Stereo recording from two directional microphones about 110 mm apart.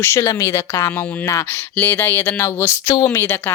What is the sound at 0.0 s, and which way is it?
Speech, 20° left (ahead or behind).